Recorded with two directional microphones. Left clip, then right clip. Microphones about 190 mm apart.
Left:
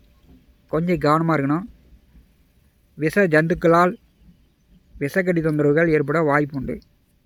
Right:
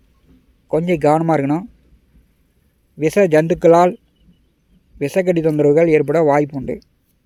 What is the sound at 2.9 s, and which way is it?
Speech, 15° right (ahead or behind).